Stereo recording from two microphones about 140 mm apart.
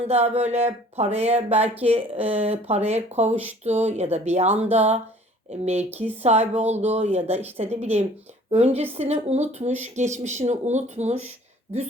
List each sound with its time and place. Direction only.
0.1 s a woman's voice: 50° right (ahead or behind)